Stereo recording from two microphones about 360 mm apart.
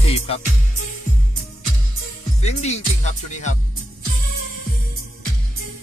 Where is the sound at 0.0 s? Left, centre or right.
Centre.